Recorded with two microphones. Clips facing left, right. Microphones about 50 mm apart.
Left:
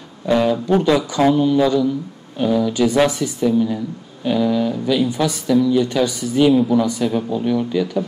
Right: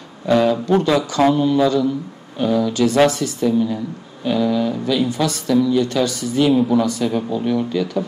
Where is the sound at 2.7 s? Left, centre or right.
Centre.